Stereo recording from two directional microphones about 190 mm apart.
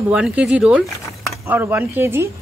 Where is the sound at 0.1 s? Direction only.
5° right (ahead or behind).